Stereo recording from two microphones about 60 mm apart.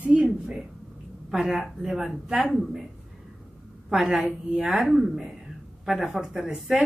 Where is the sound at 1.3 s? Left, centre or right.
Centre.